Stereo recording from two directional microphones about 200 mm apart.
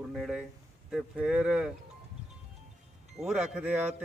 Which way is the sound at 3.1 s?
5° right (ahead or behind).